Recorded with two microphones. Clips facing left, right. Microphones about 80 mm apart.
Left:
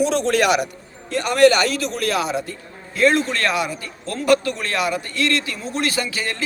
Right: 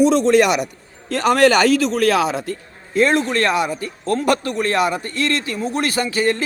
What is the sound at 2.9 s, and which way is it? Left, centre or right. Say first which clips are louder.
A man's voice: right 1 dB; right.